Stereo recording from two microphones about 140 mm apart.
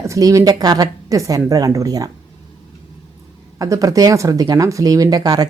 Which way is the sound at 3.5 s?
25° right (ahead or behind).